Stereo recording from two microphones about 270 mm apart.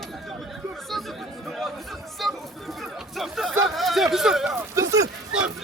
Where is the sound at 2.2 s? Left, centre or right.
Centre.